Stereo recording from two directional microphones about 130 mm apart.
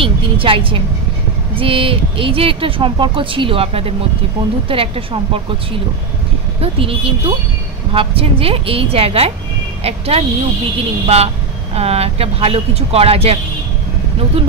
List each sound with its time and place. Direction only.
0.0 s a woman's voice: 45° right (ahead or behind)